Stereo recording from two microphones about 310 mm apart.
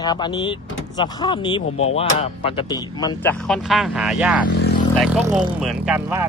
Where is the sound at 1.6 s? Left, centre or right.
Left.